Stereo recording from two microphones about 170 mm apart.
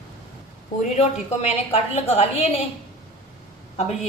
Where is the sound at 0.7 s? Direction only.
40° left (ahead or behind).